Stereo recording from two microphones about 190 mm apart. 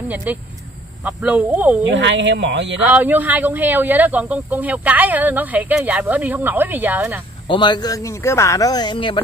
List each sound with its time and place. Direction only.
0.1 s speech: 10° right (ahead or behind)
1.9 s speech: 70° right (ahead or behind)
2.8 s speech: 10° right (ahead or behind)
7.4 s speech: 25° left (ahead or behind)